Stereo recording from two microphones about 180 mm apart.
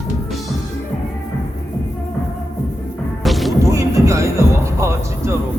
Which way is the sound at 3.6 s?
20° right (ahead or behind).